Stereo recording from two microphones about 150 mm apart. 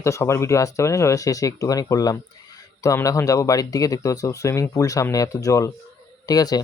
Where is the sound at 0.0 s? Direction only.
20° left (ahead or behind).